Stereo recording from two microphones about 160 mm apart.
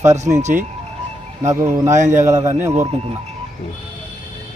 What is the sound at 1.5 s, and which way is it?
Speech, 15° right (ahead or behind).